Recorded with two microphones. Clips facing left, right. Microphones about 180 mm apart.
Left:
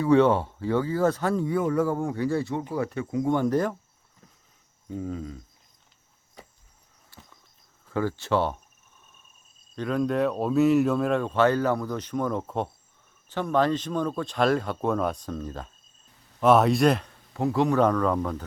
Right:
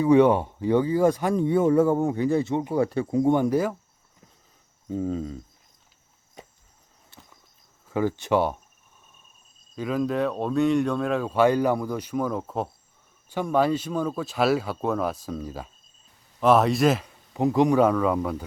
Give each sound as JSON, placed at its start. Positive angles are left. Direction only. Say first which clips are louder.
{"t": 0.0, "sound": "speech", "louder": "right 2 dB", "side_deg": -15}
{"t": 1.5, "sound": "speech", "louder": "right 8 dB", "side_deg": -25}
{"t": 3.3, "sound": "speech", "louder": "right 2 dB", "side_deg": -10}
{"t": 4.9, "sound": "speech", "louder": "right 5 dB", "side_deg": -30}
{"t": 7.1, "sound": "walk", "louder": "even", "side_deg": -20}
{"t": 7.9, "sound": "speech", "louder": "right 2 dB", "side_deg": -15}
{"t": 9.7, "sound": "speech", "louder": "even", "side_deg": -5}
{"t": 17.3, "sound": "speech", "louder": "right 3 dB", "side_deg": -15}